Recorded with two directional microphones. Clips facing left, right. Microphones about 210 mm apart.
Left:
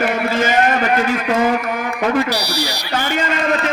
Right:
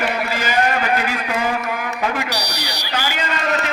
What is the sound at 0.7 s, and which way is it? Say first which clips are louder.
A man's voice: left 4 dB; 40° left (ahead or behind).